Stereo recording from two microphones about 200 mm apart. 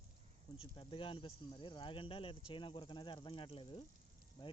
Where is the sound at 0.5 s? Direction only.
25° left (ahead or behind).